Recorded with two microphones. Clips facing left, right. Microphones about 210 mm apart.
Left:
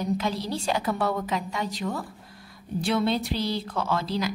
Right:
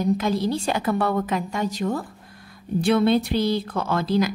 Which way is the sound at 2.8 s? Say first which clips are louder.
Right 6 dB; 55° right (ahead or behind).